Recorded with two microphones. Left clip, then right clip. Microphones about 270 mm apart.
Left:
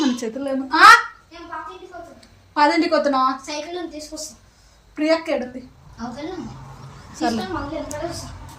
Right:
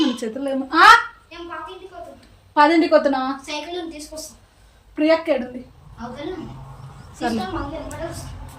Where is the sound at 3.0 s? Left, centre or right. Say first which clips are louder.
Left 2 dB; centre.